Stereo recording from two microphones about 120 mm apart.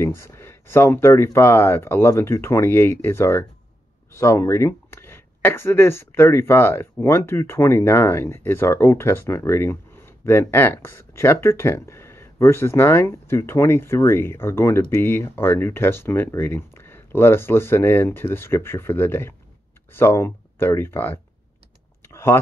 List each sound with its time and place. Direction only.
0.0 s speech: 25° left (ahead or behind)
22.0 s typing: 20° left (ahead or behind)